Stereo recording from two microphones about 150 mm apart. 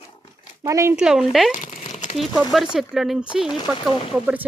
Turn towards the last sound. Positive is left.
turn(degrees=-10)  # may be behind; listen again after turning